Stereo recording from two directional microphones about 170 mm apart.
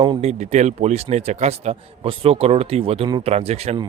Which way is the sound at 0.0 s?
35° right (ahead or behind).